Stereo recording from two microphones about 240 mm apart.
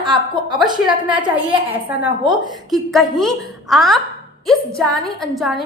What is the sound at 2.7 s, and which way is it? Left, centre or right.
A woman's voice, centre.